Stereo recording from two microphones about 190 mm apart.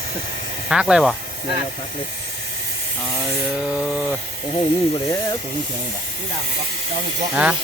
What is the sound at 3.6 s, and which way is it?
Speech, 5° right (ahead or behind).